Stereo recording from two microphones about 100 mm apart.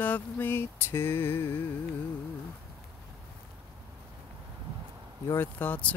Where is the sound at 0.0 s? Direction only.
20° left (ahead or behind).